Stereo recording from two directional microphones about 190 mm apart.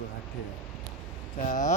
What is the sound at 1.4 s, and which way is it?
Speech, 40° left (ahead or behind).